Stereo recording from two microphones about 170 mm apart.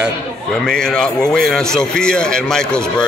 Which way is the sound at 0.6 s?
5° left (ahead or behind).